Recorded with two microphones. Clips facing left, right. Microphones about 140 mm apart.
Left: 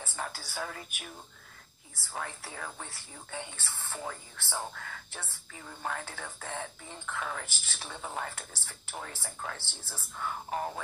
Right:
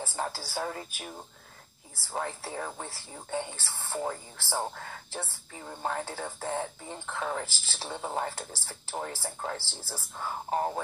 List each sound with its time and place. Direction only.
0.0 s speech: 30° right (ahead or behind)